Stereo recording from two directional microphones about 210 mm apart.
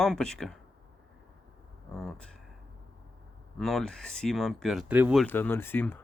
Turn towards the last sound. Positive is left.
turn(degrees=10)  # may be behind; listen again after turning